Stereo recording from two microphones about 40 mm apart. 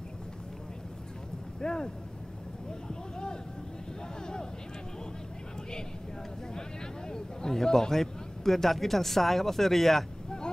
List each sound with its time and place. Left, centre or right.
1.6 s speech: centre
2.9 s a sound: centre
4.2 s vehicle: centre
7.1 s a man's voice: centre